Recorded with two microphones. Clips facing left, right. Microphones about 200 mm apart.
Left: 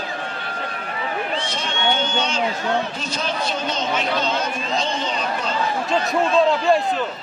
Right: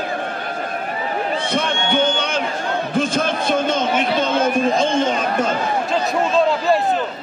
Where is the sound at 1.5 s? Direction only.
60° right (ahead or behind).